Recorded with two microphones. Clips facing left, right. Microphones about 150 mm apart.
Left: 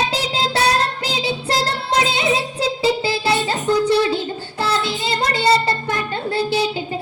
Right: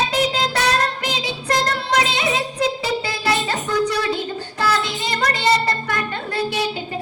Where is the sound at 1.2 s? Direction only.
30° left (ahead or behind).